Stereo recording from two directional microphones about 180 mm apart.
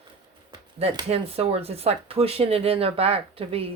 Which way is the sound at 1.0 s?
35° right (ahead or behind).